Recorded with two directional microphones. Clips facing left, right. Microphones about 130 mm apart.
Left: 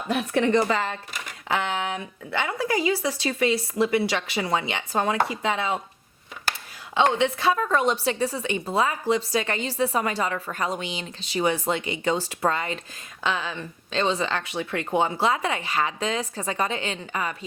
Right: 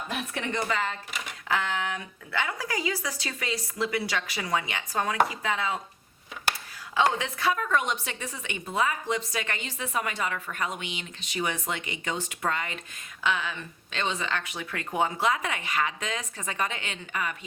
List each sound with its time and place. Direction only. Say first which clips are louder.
0.4 s a woman's voice: left 6 dB; 35° left (ahead or behind)
6.9 s a woman's voice: left 5 dB; 25° left (ahead or behind)